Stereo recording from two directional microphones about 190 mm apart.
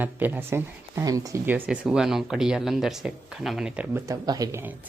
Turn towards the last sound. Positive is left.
turn(degrees=-15)  # may be behind; listen again after turning